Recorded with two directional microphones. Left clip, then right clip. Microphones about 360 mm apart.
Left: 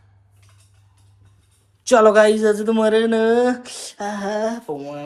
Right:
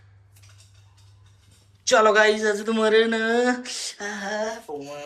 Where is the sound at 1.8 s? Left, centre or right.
Centre.